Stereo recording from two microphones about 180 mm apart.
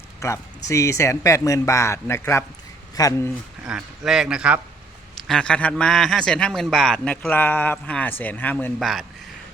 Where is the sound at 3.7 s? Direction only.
5° right (ahead or behind).